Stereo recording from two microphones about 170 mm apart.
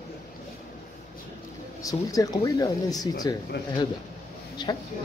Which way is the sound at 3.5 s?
90° left.